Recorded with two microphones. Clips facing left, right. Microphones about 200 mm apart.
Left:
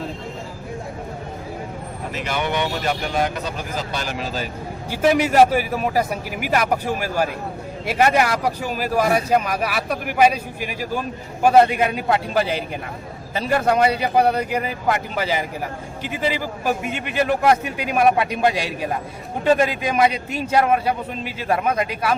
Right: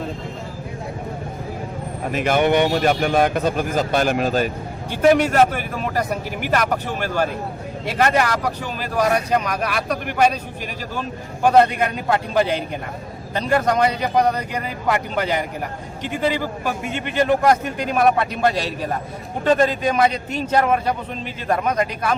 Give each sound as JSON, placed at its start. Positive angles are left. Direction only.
{"t": 2.1, "sound": "a man's voice", "side_deg": -50}
{"t": 4.9, "sound": "a man's voice", "side_deg": 5}